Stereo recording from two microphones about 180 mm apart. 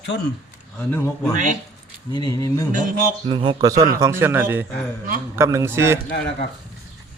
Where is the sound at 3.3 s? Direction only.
25° right (ahead or behind).